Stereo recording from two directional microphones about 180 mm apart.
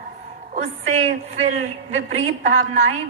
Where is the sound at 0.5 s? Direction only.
40° right (ahead or behind).